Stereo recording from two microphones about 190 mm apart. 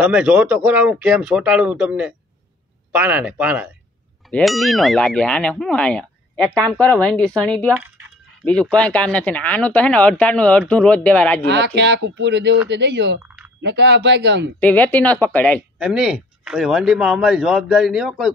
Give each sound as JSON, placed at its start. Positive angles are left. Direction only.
{"t": 0.0, "sound": "speech", "side_deg": -5}
{"t": 11.4, "sound": "speech", "side_deg": -65}
{"t": 14.6, "sound": "speech", "side_deg": 10}
{"t": 15.8, "sound": "speech", "side_deg": -5}